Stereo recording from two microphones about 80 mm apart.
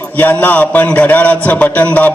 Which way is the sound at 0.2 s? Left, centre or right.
Left.